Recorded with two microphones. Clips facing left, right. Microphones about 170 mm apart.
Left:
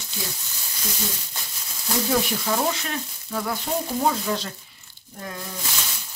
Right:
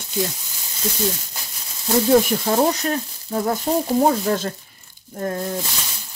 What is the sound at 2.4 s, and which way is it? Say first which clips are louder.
Frying: right 6 dB; 40° right (ahead or behind).